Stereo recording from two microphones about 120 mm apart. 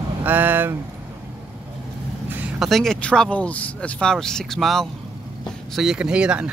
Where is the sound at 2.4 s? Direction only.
Centre (ahead or behind).